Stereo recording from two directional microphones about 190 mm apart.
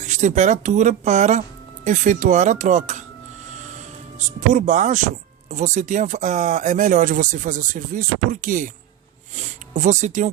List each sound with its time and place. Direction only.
0.0 s speech: 40° right (ahead or behind)